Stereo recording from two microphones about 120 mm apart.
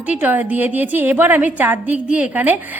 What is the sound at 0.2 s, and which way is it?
A woman's voice, 15° right (ahead or behind).